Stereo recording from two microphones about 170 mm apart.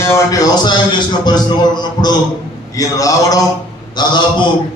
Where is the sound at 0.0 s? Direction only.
20° left (ahead or behind).